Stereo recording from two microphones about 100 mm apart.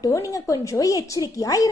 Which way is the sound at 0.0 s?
35° left (ahead or behind).